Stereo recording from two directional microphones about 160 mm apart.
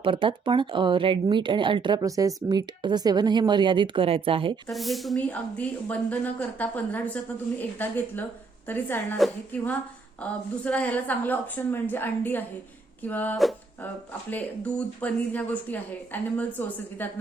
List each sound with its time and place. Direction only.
0.0 s speech: 35° right (ahead or behind)
4.7 s speech: centre (ahead or behind)
9.1 s a woman's voice: centre (ahead or behind)